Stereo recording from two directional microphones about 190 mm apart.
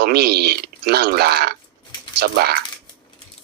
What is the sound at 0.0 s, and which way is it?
Speech, 55° right (ahead or behind).